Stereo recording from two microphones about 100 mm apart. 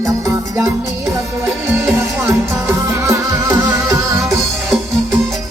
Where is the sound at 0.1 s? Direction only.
30° right (ahead or behind).